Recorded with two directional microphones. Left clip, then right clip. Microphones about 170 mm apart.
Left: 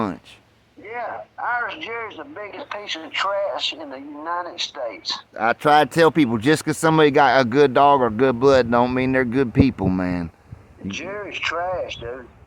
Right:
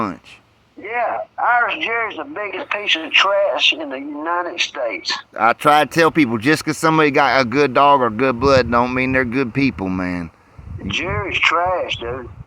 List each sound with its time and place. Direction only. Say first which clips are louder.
0.8 s speech: right 9 dB; 30° right (ahead or behind)
5.3 s speech: right 3 dB; centre (ahead or behind); by 10.2 s 15° left (ahead or behind)
10.8 s speech: right 8 dB; 30° right (ahead or behind)